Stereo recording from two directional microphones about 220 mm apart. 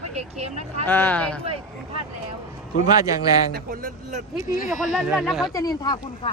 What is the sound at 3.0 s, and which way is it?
Speech, 15° right (ahead or behind).